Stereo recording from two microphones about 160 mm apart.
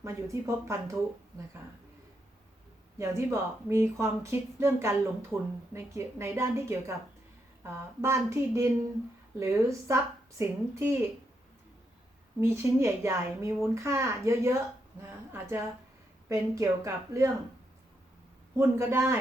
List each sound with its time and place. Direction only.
0.0 s speech: 20° right (ahead or behind)
3.0 s speech: 20° right (ahead or behind)
12.4 s speech: 15° right (ahead or behind)
18.5 s speech: 15° right (ahead or behind)